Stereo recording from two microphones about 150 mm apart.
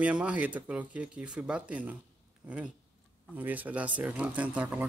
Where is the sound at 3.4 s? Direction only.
10° right (ahead or behind).